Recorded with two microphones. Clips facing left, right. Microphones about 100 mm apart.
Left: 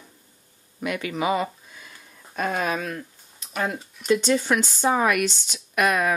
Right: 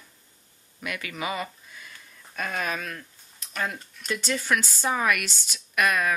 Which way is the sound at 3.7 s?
5° left (ahead or behind).